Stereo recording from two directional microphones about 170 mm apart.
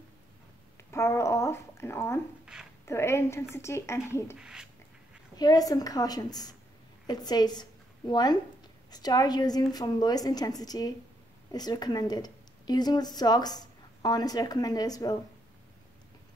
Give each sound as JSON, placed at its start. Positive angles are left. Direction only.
{"t": 0.9, "sound": "a woman's voice", "side_deg": 20}
{"t": 2.4, "sound": "a sound", "side_deg": -5}
{"t": 2.8, "sound": "a woman's voice", "side_deg": 15}
{"t": 4.4, "sound": "speech", "side_deg": -5}
{"t": 5.3, "sound": "a woman's voice", "side_deg": 25}